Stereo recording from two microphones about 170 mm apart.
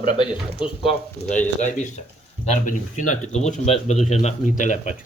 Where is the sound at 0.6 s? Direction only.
35° left (ahead or behind).